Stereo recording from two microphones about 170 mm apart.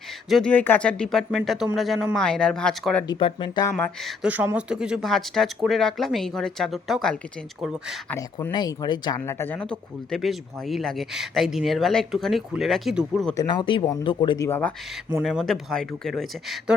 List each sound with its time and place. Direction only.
0.3 s speech: 5° left (ahead or behind)
3.1 s speech: 30° left (ahead or behind)
3.8 s speech: 10° left (ahead or behind)
4.2 s speech: 10° right (ahead or behind)
8.1 s speech: 10° left (ahead or behind)
8.5 s speech: 25° left (ahead or behind)
9.2 s speech: 10° left (ahead or behind)
13.3 s speech: 25° left (ahead or behind)
15.2 s speech: centre (ahead or behind)